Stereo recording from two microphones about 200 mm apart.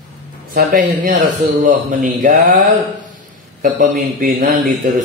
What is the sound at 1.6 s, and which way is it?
Speech, 40° right (ahead or behind).